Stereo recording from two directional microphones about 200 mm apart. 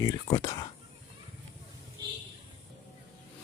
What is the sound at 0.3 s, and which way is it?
Speech, 20° left (ahead or behind).